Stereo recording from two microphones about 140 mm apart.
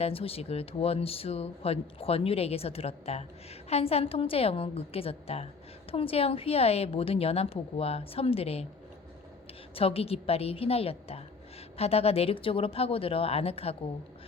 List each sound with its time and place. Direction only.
0.0 s speech: 45° left (ahead or behind)
9.7 s speech: 45° left (ahead or behind)